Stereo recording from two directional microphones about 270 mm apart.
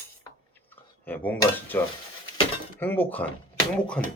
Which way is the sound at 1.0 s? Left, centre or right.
Centre.